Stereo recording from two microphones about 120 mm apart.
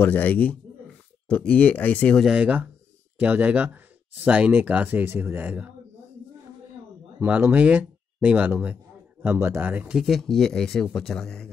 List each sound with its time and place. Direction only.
0.0 s speech: 15° left (ahead or behind)
2.1 s speech: 5° right (ahead or behind)
7.2 s speech: 15° right (ahead or behind)
9.9 s speech: centre (ahead or behind)